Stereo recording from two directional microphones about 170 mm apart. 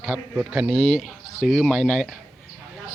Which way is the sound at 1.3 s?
45° left (ahead or behind).